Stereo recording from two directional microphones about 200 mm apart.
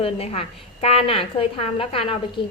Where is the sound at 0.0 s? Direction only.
30° left (ahead or behind).